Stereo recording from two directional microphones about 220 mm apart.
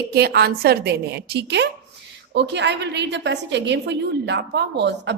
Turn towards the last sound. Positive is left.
turn(degrees=-50)  # may be behind; listen again after turning